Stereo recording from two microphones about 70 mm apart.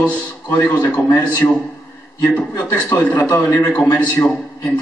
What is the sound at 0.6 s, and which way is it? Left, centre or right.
Speech, left.